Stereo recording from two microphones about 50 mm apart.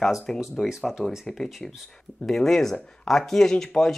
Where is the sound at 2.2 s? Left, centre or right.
Centre.